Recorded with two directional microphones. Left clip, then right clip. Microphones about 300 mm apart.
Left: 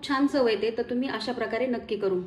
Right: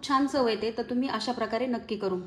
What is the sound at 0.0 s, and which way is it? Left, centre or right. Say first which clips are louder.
A woman's voice: left 1 dB; right.